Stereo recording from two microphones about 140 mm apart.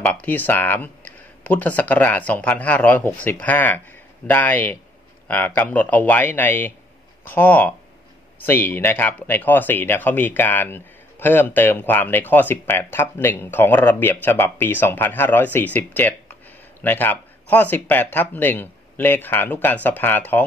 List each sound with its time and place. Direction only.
0.0 s speech: 10° left (ahead or behind)